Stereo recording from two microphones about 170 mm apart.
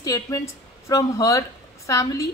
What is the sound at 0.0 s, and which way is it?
A woman's voice, 20° left (ahead or behind).